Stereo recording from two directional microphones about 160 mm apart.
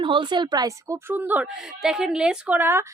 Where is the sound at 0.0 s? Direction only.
30° right (ahead or behind).